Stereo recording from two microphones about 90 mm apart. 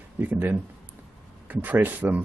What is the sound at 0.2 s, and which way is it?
A man's voice, 20° right (ahead or behind).